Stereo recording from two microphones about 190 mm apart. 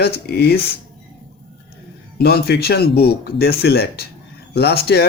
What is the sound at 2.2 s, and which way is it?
A man's voice, 55° left (ahead or behind).